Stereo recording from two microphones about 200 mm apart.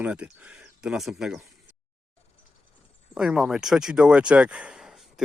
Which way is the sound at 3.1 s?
5° right (ahead or behind).